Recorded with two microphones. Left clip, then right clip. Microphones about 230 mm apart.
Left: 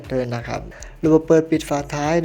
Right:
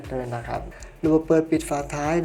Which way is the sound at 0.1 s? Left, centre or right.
Left.